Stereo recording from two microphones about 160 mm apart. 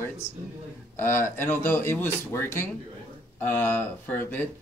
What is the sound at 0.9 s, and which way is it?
Speech, 15° left (ahead or behind).